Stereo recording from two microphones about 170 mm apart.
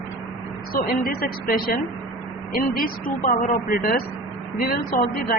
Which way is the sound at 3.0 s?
55° left (ahead or behind).